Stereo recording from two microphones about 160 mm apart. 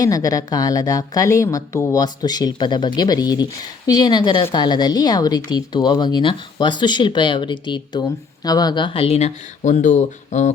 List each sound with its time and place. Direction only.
0.0 s a woman's voice: 20° left (ahead or behind); by 10.5 s 50° left (ahead or behind)